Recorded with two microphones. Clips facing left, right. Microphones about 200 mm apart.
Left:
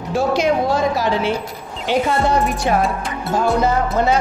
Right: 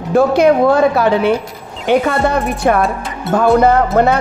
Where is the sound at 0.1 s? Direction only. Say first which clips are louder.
Right 7 dB; 60° right (ahead or behind).